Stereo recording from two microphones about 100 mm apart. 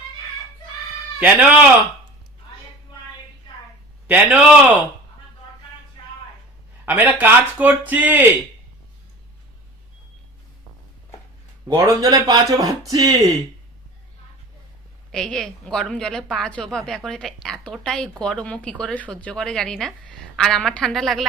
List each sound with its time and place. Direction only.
1.2 s speech: 15° right (ahead or behind)
4.0 s speech: 15° right (ahead or behind)
6.0 s a sound: 50° left (ahead or behind)
6.8 s speech: 15° right (ahead or behind)
11.7 s speech: 35° right (ahead or behind)
15.1 s a woman's voice: 5° left (ahead or behind)